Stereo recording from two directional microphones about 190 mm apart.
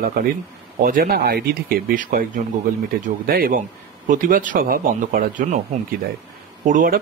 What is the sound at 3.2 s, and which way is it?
Speech, 50° right (ahead or behind).